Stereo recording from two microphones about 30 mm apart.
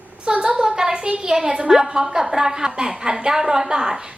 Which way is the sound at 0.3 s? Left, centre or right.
Right.